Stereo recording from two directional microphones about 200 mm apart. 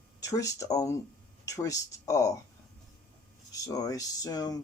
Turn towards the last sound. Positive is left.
turn(degrees=20)  # may be behind; listen again after turning